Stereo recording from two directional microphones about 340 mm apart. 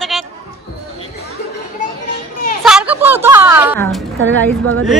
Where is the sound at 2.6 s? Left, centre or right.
Centre.